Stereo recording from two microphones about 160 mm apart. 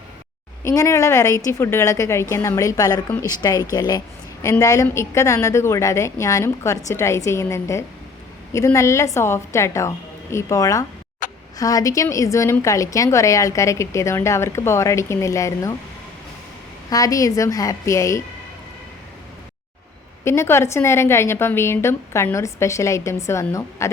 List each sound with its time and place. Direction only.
0.6 s a woman's voice: 20° left (ahead or behind)
11.2 s a sound: 55° left (ahead or behind)
11.5 s a woman's voice: 20° left (ahead or behind)
16.9 s a woman's voice: 20° left (ahead or behind)
20.2 s a woman's voice: 15° left (ahead or behind)